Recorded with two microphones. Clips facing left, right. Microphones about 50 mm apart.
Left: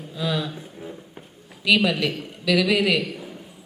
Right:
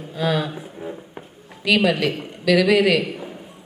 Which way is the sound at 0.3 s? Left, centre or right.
Right.